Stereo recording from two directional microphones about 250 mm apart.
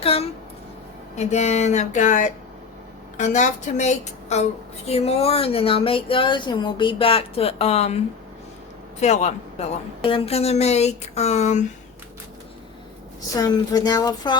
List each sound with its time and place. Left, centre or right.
0.0 s speech: left
9.0 s speech: left
13.3 s speech: centre